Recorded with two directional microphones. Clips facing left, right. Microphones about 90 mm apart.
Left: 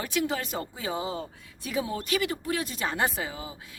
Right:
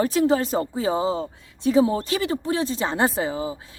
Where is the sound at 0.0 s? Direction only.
35° right (ahead or behind).